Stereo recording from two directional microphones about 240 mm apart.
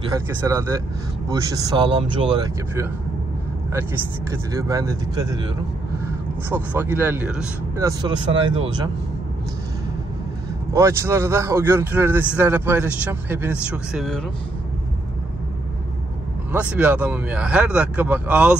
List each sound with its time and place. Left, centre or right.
0.1 s a man's voice: centre
6.5 s a man's voice: centre
10.7 s a man's voice: centre
16.5 s speech: centre